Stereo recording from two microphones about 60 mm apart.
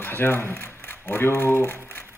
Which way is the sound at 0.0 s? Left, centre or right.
Left.